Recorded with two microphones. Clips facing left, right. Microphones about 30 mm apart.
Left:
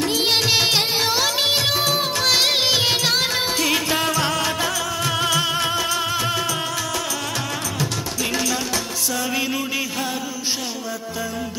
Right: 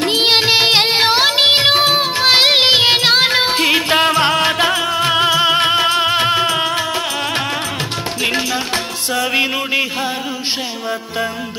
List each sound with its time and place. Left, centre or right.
0.0 s music of bollywood: right
8.2 s music: right